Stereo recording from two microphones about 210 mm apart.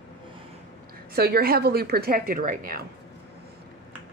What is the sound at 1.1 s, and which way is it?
Speech, 50° right (ahead or behind).